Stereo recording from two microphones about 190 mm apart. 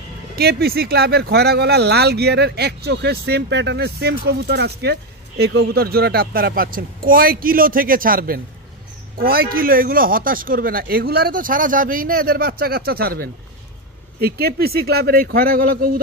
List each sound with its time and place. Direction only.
0.4 s speech: 55° right (ahead or behind)